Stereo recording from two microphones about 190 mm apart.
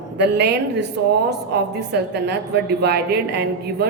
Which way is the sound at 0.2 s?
60° right (ahead or behind).